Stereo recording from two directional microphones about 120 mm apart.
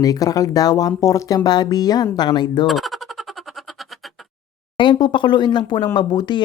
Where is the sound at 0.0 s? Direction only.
30° left (ahead or behind).